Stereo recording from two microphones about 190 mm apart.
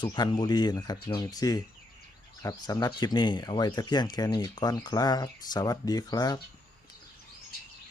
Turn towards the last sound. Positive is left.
turn(degrees=20)  # may be behind; listen again after turning